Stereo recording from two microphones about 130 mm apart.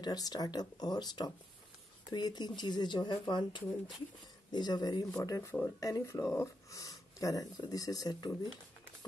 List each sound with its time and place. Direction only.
0.0 s speech: 30° left (ahead or behind)